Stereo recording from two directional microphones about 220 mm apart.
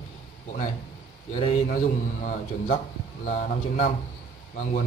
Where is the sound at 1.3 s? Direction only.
30° left (ahead or behind).